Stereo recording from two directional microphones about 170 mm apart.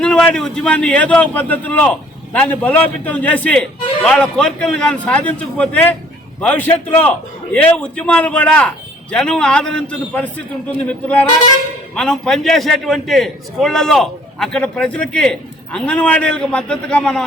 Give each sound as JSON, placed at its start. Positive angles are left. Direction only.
{"t": 0.0, "sound": "a man's voice", "side_deg": 5}